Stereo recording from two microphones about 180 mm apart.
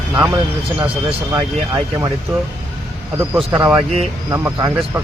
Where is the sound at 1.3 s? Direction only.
20° right (ahead or behind).